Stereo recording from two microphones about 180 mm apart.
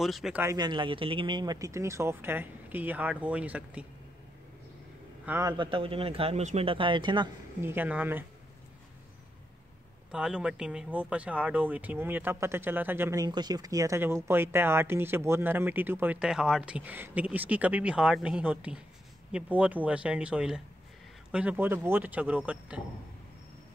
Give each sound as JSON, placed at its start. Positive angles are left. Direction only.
{"t": 0.0, "sound": "speech", "side_deg": 0}
{"t": 0.4, "sound": "speech", "side_deg": -20}
{"t": 5.2, "sound": "a man's voice", "side_deg": -10}
{"t": 5.6, "sound": "a man's voice", "side_deg": -30}
{"t": 7.6, "sound": "speech", "side_deg": -10}
{"t": 10.1, "sound": "speech", "side_deg": -5}